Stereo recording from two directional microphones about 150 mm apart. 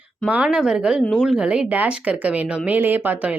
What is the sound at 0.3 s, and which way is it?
A woman's voice, 5° right (ahead or behind).